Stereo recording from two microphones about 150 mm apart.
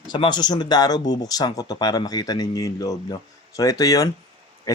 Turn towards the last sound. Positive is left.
turn(degrees=25)  # may be behind; listen again after turning